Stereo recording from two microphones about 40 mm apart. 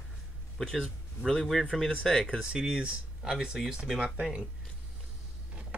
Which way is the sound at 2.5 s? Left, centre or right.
Right.